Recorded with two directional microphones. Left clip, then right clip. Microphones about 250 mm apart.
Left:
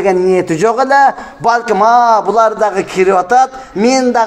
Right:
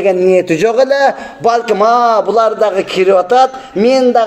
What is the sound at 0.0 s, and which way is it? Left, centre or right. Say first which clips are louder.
Speech: right 1 dB; centre.